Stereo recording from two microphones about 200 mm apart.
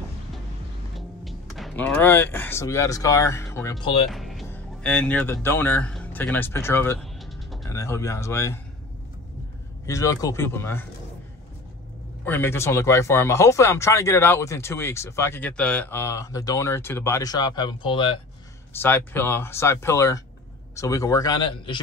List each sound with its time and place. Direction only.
0.9 s a man's voice: centre (ahead or behind); by 4.1 s 25° left (ahead or behind)
4.1 s music: centre (ahead or behind)
4.5 s speech: 5° left (ahead or behind)
7.0 s music: centre (ahead or behind)
7.6 s speech: 15° left (ahead or behind)
9.8 s speech: 15° left (ahead or behind)
12.3 s speech: 10° left (ahead or behind)
18.8 s a man's voice: 10° left (ahead or behind)